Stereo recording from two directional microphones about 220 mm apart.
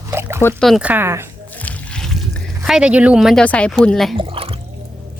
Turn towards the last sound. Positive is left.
turn(degrees=-25)  # may be behind; listen again after turning